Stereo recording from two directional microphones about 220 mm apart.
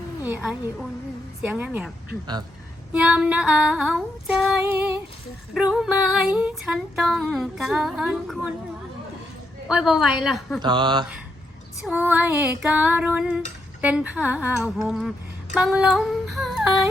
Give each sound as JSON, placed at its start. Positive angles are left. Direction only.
{"t": 0.2, "sound": "a woman's voice", "side_deg": -5}
{"t": 1.5, "sound": "female singing", "side_deg": -5}
{"t": 2.9, "sound": "female singing", "side_deg": -5}
{"t": 9.6, "sound": "female singing", "side_deg": -5}
{"t": 10.6, "sound": "speech", "side_deg": -20}
{"t": 11.8, "sound": "female singing", "side_deg": -5}